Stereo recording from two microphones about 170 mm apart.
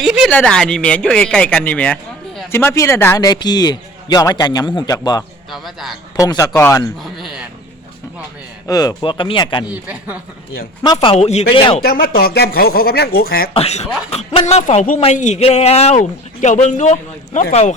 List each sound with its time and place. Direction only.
0.0 s a man's voice: centre (ahead or behind); by 5.2 s 25° left (ahead or behind)
5.5 s speech: centre (ahead or behind)
6.1 s a man's voice: 20° left (ahead or behind)
7.0 s speech: centre (ahead or behind)
8.6 s a man's voice: 20° left (ahead or behind)
9.6 s speech: 10° right (ahead or behind)
10.8 s speech: 30° left (ahead or behind)
11.8 s speech: 60° left (ahead or behind)
13.5 s speech: 40° left (ahead or behind)